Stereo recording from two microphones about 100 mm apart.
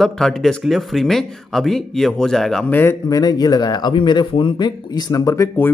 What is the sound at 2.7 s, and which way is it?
Speech, 20° left (ahead or behind).